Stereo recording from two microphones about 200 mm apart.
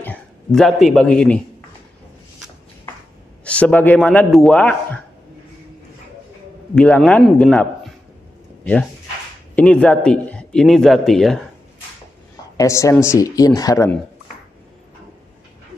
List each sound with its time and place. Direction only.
0.0 s speech: 5° left (ahead or behind)
3.4 s a man's voice: 5° left (ahead or behind)
6.7 s a man's voice: 5° left (ahead or behind)
9.6 s speech: 5° left (ahead or behind)
12.5 s a man's voice: 15° left (ahead or behind)